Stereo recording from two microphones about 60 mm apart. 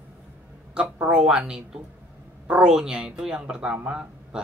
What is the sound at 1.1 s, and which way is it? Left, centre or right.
Speech, centre.